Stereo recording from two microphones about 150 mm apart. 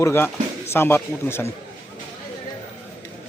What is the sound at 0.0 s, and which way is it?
Speech, 15° left (ahead or behind).